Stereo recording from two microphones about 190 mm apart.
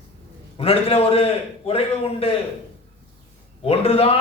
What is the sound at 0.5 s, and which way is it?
A man's voice, 30° left (ahead or behind).